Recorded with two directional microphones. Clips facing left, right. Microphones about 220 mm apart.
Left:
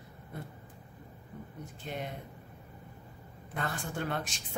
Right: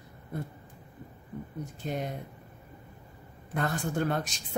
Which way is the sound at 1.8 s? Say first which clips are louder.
Right 6 dB; 40° right (ahead or behind).